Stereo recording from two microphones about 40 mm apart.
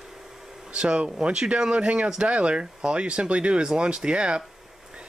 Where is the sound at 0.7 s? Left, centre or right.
Right.